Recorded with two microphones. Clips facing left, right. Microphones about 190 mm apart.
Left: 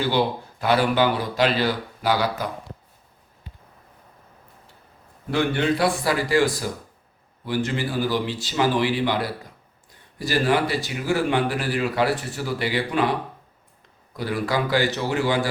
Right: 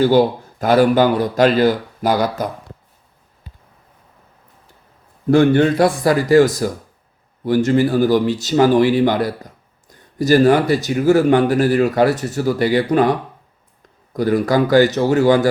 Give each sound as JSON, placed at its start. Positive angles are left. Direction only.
{"t": 0.0, "sound": "speech", "side_deg": -45}
{"t": 5.3, "sound": "speech", "side_deg": -45}
{"t": 14.1, "sound": "speech", "side_deg": -45}